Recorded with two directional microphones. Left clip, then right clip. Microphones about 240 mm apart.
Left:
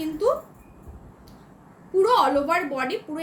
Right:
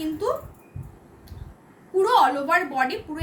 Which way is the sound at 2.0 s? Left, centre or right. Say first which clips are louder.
Right 1 dB; centre.